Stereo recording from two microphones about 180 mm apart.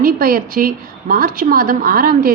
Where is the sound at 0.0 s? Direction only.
55° right (ahead or behind).